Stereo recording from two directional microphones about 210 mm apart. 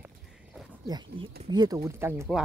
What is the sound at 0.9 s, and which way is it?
Speech, 20° right (ahead or behind).